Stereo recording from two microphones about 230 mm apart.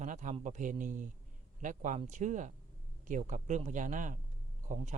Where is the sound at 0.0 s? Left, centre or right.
Right.